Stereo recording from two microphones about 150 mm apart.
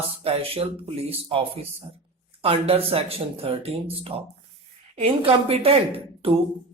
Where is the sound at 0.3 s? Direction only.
40° right (ahead or behind).